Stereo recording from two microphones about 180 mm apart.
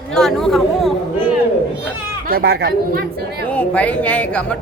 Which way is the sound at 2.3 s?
60° right (ahead or behind).